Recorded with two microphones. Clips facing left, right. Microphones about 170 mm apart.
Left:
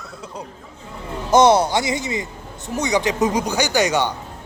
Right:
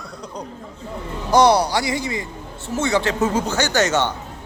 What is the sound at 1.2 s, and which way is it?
Speech, 20° left (ahead or behind).